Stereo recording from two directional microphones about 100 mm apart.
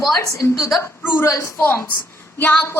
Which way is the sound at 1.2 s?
25° left (ahead or behind).